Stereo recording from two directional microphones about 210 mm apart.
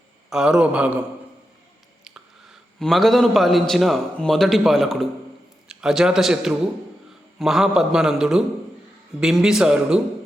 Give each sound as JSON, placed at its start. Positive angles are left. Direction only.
{"t": 0.3, "sound": "a man's voice", "side_deg": -5}
{"t": 2.0, "sound": "a man's voice", "side_deg": 0}